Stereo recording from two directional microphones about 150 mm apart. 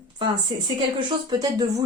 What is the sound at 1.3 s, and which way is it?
Speech, 25° right (ahead or behind).